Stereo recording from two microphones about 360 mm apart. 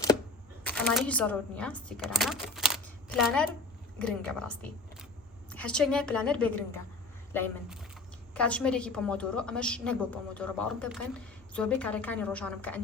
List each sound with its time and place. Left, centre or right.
0.6 s a woman's voice: centre